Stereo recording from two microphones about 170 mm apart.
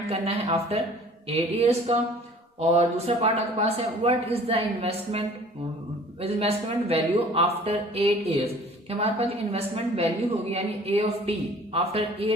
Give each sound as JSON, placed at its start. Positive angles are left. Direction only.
{"t": 0.1, "sound": "a woman's voice", "side_deg": -35}